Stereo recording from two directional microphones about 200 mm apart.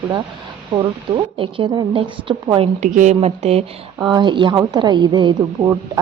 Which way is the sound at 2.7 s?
40° right (ahead or behind).